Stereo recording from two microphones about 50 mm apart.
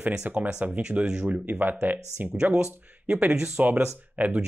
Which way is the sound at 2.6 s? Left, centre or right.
Right.